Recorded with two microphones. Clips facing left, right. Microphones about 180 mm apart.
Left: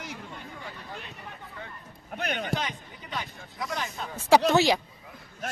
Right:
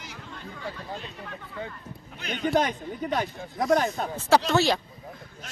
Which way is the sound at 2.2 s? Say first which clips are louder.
Right 2 dB; 55° left (ahead or behind).